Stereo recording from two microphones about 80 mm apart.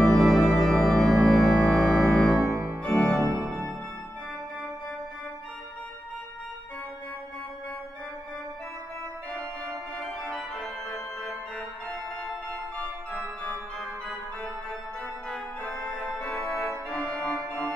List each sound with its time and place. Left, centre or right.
0.0 s organ: centre
2.4 s music: right
2.9 s organ: centre
9.3 s organ: centre
12.4 s music: centre
15.2 s organ: centre